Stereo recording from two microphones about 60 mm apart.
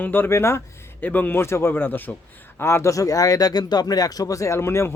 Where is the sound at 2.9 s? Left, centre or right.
Left.